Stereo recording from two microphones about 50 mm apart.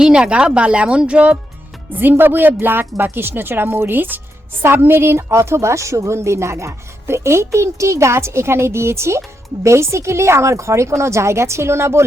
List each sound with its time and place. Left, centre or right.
0.0 s speech: centre
1.9 s a woman's voice: right
6.1 s a child's voice: right